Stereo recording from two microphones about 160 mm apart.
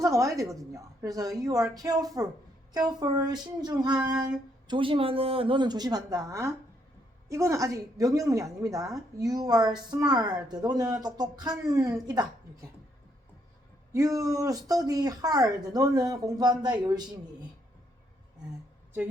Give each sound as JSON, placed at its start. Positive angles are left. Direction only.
{"t": 0.0, "sound": "speech", "side_deg": -20}
{"t": 13.9, "sound": "speech", "side_deg": -20}